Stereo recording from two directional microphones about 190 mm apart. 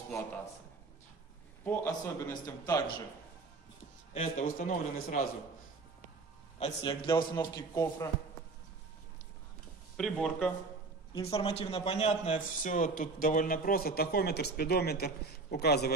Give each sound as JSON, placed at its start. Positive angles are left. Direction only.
{"t": 1.6, "sound": "a man's voice", "side_deg": 15}
{"t": 4.1, "sound": "a man's voice", "side_deg": 35}
{"t": 6.6, "sound": "a man's voice", "side_deg": 25}
{"t": 9.9, "sound": "speech", "side_deg": 5}
{"t": 11.2, "sound": "a man's voice", "side_deg": 30}